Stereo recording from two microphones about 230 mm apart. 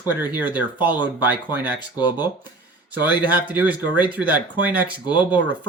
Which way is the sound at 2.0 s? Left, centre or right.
Centre.